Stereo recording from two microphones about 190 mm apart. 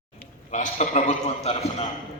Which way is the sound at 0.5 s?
40° left (ahead or behind).